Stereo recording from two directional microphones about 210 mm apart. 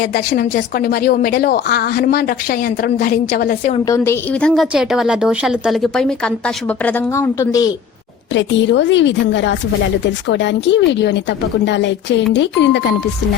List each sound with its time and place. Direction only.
0.0 s speech: 45° left (ahead or behind)
3.8 s a woman's voice: 15° left (ahead or behind)
8.3 s speech: 60° left (ahead or behind)